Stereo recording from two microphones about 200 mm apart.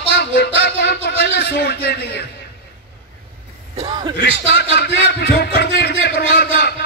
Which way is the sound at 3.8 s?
25° right (ahead or behind).